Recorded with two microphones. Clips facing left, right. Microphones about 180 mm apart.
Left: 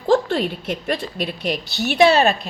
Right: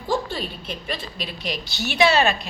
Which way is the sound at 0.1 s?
70° left (ahead or behind).